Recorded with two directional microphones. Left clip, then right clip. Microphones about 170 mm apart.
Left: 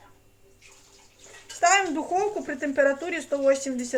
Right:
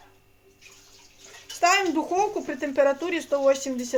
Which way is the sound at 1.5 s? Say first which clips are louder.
Even; 20° right (ahead or behind).